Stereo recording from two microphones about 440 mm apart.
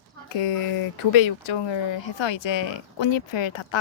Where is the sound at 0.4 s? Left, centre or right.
Left.